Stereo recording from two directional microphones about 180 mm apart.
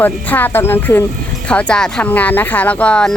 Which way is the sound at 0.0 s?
10° left (ahead or behind).